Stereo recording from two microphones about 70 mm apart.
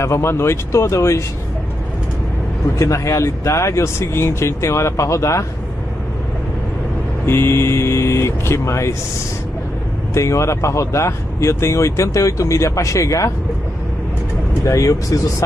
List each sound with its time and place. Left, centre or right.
0.0 s speech: left
2.8 s speech: left
7.2 s speech: left
10.1 s speech: left
14.6 s speech: left